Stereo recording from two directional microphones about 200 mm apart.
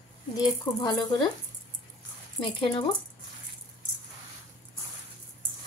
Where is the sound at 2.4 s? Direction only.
25° left (ahead or behind).